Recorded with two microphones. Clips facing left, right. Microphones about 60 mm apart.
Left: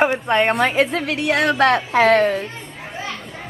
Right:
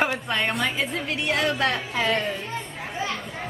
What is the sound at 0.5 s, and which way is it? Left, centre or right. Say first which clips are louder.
A woman's voice: left 8 dB; left.